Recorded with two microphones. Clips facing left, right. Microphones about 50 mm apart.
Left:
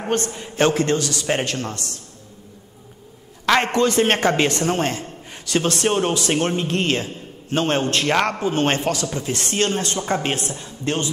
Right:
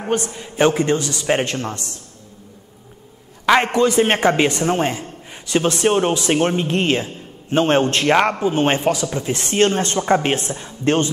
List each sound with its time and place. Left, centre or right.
0.6 s a man's voice: centre
3.4 s a man's voice: centre; by 8.1 s right
8.1 s a man's voice: centre